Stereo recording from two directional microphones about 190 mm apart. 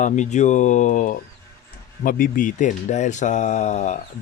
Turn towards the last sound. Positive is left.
turn(degrees=40)  # may be behind; listen again after turning